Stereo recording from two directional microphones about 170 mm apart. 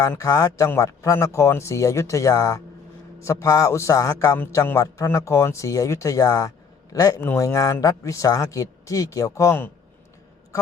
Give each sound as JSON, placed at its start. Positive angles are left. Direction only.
{"t": 0.0, "sound": "a man's voice", "side_deg": 20}